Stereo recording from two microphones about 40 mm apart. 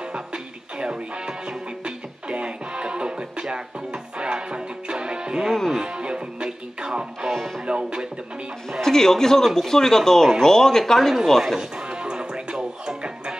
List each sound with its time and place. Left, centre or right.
0.1 s music: right
7.2 s music: centre
7.6 s music: right
8.8 s speech: centre
11.9 s music: right